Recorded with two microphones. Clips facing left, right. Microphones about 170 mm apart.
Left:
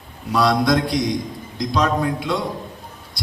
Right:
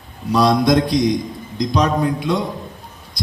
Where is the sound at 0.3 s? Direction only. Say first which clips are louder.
Right 3 dB; 20° right (ahead or behind).